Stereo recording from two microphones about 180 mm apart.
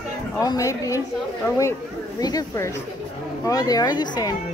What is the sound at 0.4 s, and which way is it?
Speech, 20° left (ahead or behind).